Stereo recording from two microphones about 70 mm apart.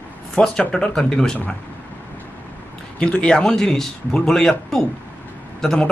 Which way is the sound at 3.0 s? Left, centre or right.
Centre.